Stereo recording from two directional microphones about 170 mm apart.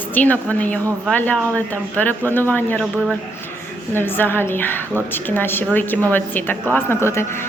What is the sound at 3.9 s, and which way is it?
A woman's voice, 10° left (ahead or behind).